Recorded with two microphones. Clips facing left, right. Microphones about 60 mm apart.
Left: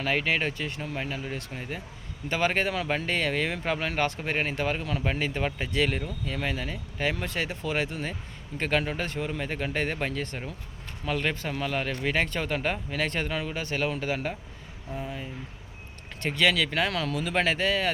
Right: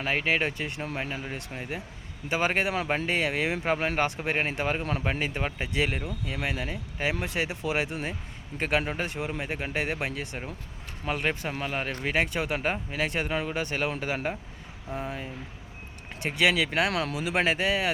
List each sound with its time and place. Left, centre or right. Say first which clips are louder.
0.0 s speech: even; right
5.1 s speech: left 1 dB; right